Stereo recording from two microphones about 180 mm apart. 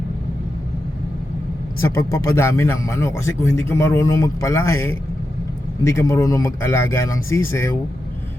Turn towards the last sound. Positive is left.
turn(degrees=15)  # may be behind; listen again after turning